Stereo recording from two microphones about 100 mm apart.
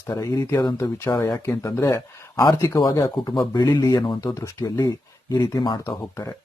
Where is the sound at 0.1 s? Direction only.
30° left (ahead or behind).